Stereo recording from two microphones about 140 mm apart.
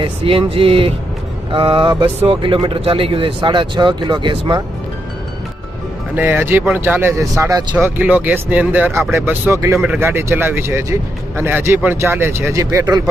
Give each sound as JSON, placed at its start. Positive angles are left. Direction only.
{"t": 0.0, "sound": "speech", "side_deg": -40}
{"t": 6.1, "sound": "speech", "side_deg": -15}
{"t": 7.8, "sound": "speech", "side_deg": -10}
{"t": 9.7, "sound": "speech", "side_deg": -10}